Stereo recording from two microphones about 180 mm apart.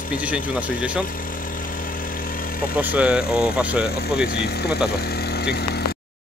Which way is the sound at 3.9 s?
60° left (ahead or behind).